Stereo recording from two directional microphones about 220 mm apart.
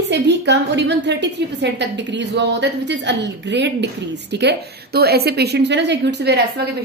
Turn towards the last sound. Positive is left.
turn(degrees=-50)  # may be behind; listen again after turning